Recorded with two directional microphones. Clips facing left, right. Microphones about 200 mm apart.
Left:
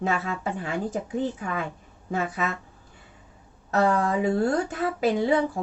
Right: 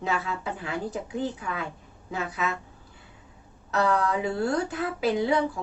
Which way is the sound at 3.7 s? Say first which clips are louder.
Left 2 dB; 45° left (ahead or behind).